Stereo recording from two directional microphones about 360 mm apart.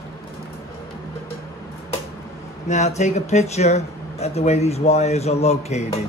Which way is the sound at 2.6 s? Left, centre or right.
Centre.